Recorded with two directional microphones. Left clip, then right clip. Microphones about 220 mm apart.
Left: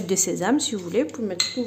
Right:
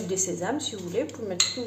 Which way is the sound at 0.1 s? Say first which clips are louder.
Left 7 dB; 50° left (ahead or behind).